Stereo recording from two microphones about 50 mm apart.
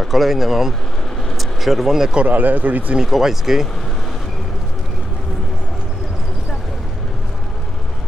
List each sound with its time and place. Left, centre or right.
0.0 s speech: centre
2.2 s speech: right
3.1 s speech: centre